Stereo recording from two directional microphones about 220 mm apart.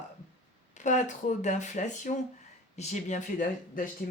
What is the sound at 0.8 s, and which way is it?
Speech, 35° left (ahead or behind).